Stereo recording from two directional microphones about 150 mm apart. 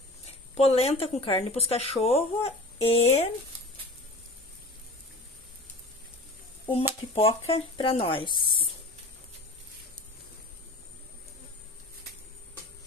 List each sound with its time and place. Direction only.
0.6 s speech: 40° left (ahead or behind)
7.2 s speech: 40° left (ahead or behind)